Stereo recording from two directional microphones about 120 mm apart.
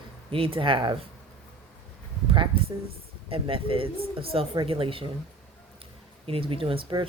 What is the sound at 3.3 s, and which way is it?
Speech, 50° right (ahead or behind).